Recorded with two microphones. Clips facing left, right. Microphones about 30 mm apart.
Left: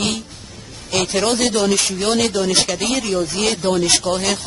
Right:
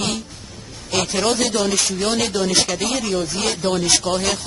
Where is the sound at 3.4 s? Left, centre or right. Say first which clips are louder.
Left 2 dB; left.